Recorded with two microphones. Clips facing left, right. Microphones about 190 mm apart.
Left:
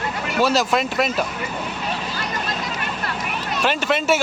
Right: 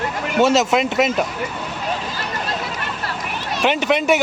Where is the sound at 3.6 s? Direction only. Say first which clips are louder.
Right 4 dB; 20° right (ahead or behind).